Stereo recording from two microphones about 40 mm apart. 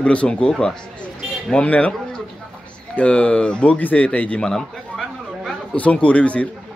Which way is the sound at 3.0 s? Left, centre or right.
Left.